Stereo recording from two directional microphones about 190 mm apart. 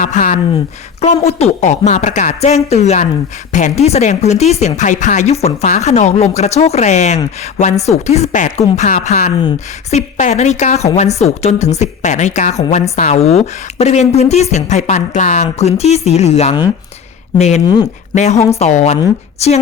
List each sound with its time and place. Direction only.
0.0 s speech: 40° left (ahead or behind)